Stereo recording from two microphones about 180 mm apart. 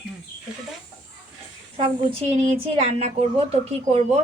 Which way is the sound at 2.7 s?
35° right (ahead or behind).